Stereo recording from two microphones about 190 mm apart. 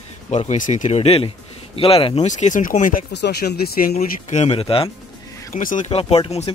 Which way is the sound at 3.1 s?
60° left (ahead or behind).